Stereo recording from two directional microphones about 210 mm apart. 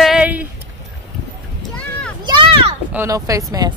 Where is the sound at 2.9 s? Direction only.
15° right (ahead or behind).